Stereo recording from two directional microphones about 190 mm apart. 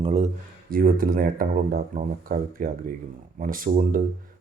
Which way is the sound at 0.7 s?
50° right (ahead or behind).